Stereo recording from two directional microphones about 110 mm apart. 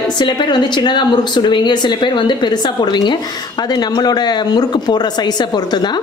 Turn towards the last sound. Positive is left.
turn(degrees=40)  # may be behind; listen again after turning